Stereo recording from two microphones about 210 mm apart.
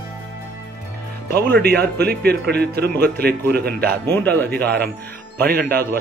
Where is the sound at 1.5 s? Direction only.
50° right (ahead or behind).